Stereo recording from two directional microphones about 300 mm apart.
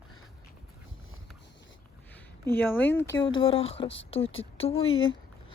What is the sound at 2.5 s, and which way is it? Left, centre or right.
Speech, centre.